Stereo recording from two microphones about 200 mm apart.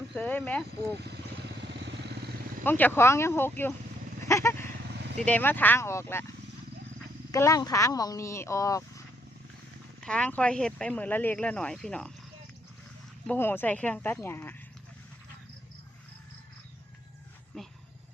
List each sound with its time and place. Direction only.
0.1 s speech: 5° left (ahead or behind)
0.9 s vehicle: 55° right (ahead or behind)
2.6 s speech: 10° left (ahead or behind)
7.3 s speech: 15° left (ahead or behind)
10.0 s speech: 5° left (ahead or behind)
13.2 s speech: 10° left (ahead or behind)